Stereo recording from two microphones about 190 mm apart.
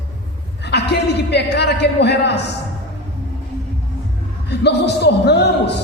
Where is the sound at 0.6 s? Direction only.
65° left (ahead or behind).